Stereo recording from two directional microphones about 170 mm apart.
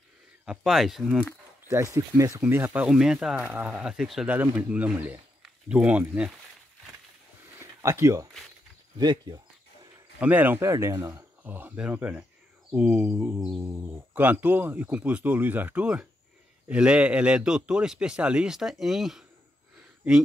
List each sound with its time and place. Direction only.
0.5 s a man's voice: centre (ahead or behind)
1.7 s speech: 20° right (ahead or behind)
7.5 s a sound: 15° right (ahead or behind)
8.9 s speech: 25° right (ahead or behind)
10.2 s a man's voice: 10° right (ahead or behind)